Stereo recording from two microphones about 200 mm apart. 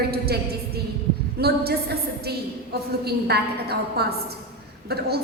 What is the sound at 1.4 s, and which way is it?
A woman's voice, 55° right (ahead or behind).